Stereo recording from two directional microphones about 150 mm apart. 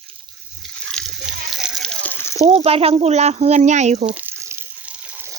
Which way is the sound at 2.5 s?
45° right (ahead or behind).